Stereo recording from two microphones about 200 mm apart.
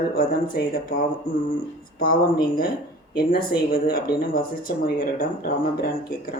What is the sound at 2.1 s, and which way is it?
Speech, 45° left (ahead or behind).